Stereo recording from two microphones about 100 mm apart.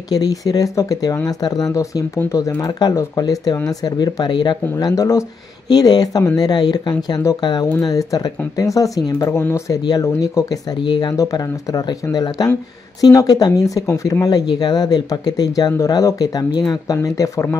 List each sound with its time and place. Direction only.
0.1 s speech: 40° left (ahead or behind)
4.7 s speech: 35° left (ahead or behind)
5.7 s speech: 40° left (ahead or behind)
10.8 s speech: 45° left (ahead or behind); by 17.6 s 30° left (ahead or behind)